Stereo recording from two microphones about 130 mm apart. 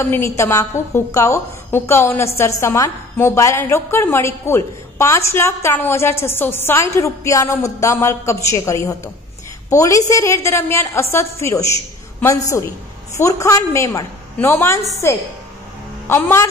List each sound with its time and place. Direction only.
0.0 s a woman's voice: 20° left (ahead or behind)